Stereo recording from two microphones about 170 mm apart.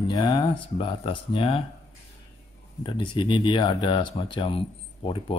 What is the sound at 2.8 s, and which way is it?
Speech, 30° left (ahead or behind).